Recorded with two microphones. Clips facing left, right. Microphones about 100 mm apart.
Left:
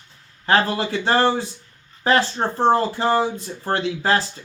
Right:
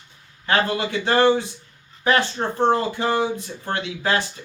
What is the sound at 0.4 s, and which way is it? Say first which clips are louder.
Speech: left 2 dB; 30° left (ahead or behind).